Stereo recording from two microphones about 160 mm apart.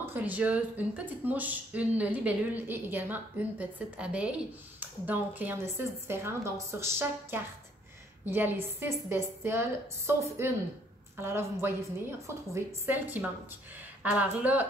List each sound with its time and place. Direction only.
0.0 s speech: 10° right (ahead or behind)